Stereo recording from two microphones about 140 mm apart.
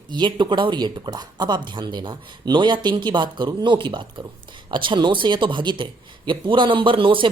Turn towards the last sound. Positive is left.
turn(degrees=-40)  # may be behind; listen again after turning